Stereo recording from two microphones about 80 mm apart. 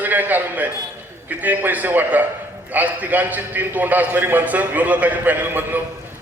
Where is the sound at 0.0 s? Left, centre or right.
Right.